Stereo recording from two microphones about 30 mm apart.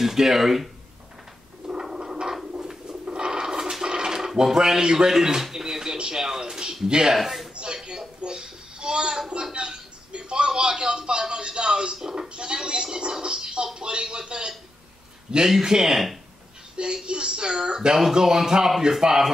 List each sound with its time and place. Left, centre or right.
0.0 s speech: centre
1.7 s a sound: right
4.6 s speech: centre
5.5 s a sound: centre
6.1 s speech: centre
7.2 s a man's voice: centre
7.7 s a sound: right
9.3 s a man's voice: right
12.4 s a sound: right
13.7 s speech: right
15.6 s speech: centre
16.7 s speech: right; by 19.3 s centre